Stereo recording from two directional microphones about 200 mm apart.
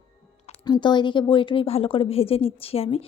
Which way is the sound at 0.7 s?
20° left (ahead or behind).